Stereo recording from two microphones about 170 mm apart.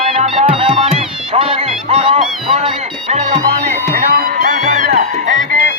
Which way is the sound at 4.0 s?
60° right (ahead or behind).